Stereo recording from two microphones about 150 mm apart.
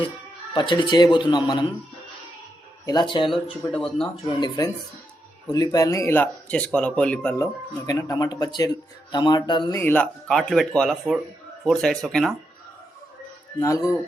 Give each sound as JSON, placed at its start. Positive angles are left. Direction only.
{"t": 0.5, "sound": "speech", "side_deg": 30}
{"t": 2.8, "sound": "speech", "side_deg": 30}
{"t": 3.7, "sound": "speech", "side_deg": 0}
{"t": 4.3, "sound": "speech", "side_deg": 30}
{"t": 7.3, "sound": "speech", "side_deg": 25}
{"t": 9.7, "sound": "speech", "side_deg": 15}
{"t": 13.6, "sound": "speech", "side_deg": 20}